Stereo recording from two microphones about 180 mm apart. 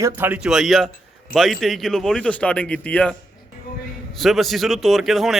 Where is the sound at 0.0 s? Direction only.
10° right (ahead or behind); by 3.2 s 10° left (ahead or behind).